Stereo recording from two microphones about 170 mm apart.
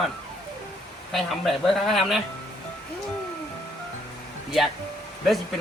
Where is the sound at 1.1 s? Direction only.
Centre (ahead or behind).